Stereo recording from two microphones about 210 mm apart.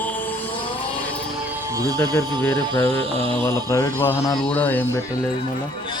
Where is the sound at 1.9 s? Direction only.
10° left (ahead or behind).